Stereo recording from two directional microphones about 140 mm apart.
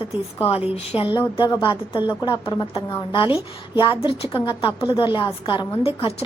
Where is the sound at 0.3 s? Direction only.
45° left (ahead or behind).